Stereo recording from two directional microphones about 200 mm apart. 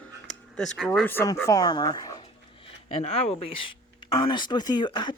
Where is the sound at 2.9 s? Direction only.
30° left (ahead or behind).